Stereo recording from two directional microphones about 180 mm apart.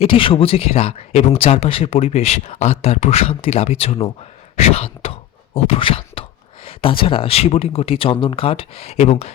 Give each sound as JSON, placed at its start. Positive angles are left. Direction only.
{"t": 0.0, "sound": "speech", "side_deg": 30}